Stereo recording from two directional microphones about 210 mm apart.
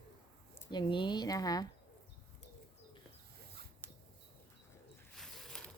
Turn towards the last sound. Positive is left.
turn(degrees=0)  # may be behind; listen again after turning